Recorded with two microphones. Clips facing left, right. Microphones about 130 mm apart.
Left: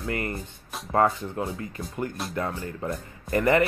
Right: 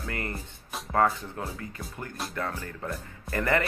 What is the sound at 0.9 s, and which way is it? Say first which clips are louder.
Speech: left 3 dB; 20° left (ahead or behind).